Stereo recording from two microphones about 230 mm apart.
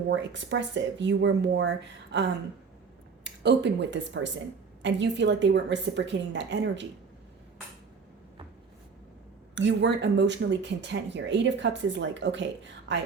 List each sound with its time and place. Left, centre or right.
0.1 s speech: right
3.2 s speech: right
9.6 s speech: right